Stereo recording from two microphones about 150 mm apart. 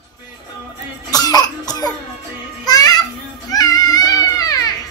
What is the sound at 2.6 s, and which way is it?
Music, 25° left (ahead or behind).